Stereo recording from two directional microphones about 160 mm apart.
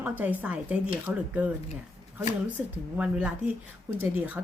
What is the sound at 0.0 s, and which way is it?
Speech, 10° right (ahead or behind).